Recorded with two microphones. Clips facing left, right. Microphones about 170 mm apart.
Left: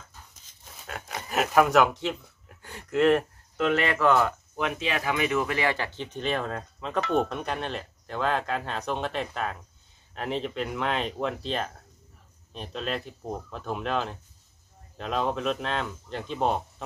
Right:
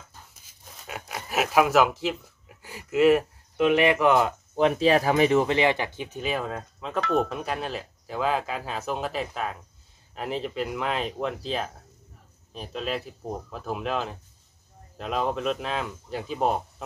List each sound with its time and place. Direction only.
0.8 s speech: 5° right (ahead or behind)
4.6 s speech: 35° right (ahead or behind); by 16.8 s 5° right (ahead or behind)